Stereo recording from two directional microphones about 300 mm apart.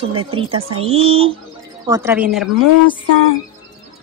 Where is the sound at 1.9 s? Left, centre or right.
Centre.